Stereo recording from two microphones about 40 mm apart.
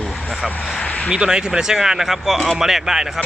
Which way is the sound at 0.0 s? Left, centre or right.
Centre.